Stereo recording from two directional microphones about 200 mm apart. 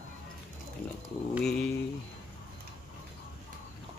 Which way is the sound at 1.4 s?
5° left (ahead or behind).